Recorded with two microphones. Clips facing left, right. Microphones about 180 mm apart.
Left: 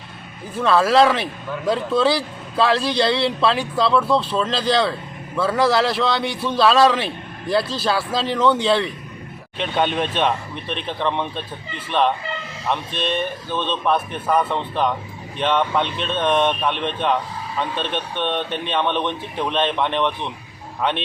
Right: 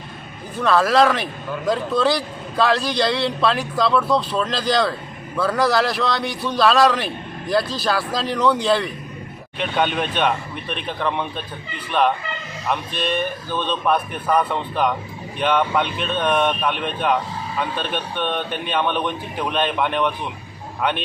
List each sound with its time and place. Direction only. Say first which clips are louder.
0.6 s a man's voice: left 1 dB; centre (ahead or behind)
7.6 s speech: left 1 dB; 30° left (ahead or behind)
7.9 s a man's voice: left 1 dB; centre (ahead or behind)
9.6 s a man's voice: even; centre (ahead or behind)